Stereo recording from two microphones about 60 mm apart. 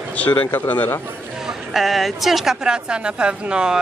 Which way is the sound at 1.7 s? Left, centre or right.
Centre.